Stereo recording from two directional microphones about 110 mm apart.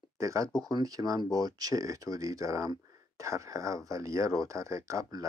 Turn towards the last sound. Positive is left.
turn(degrees=-30)  # may be behind; listen again after turning